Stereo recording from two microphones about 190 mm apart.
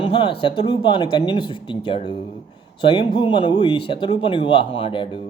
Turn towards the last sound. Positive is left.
turn(degrees=25)  # may be behind; listen again after turning